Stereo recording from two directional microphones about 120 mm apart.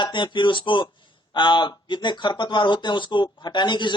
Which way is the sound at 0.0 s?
40° left (ahead or behind).